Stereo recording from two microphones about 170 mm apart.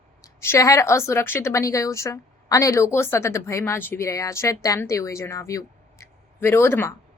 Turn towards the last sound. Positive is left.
turn(degrees=15)  # may be behind; listen again after turning